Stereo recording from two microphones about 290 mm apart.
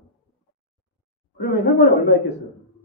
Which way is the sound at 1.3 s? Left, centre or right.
Left.